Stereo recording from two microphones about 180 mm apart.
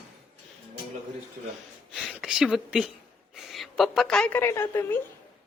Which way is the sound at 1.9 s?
Centre (ahead or behind).